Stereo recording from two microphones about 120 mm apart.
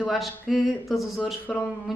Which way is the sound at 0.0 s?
Centre (ahead or behind).